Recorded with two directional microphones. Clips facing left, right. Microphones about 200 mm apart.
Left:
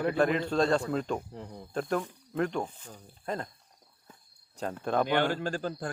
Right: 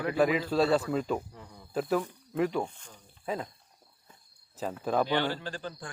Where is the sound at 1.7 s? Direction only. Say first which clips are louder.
Right 2 dB; 5° right (ahead or behind).